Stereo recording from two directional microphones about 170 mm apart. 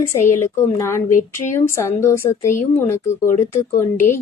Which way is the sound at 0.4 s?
15° left (ahead or behind).